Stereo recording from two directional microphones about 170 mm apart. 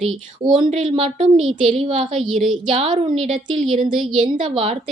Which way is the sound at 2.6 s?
35° right (ahead or behind).